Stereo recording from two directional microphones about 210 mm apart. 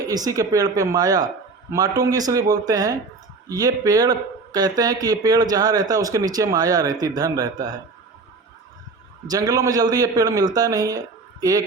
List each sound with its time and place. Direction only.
0.1 s a man's voice: 15° right (ahead or behind)
9.2 s a man's voice: 15° right (ahead or behind)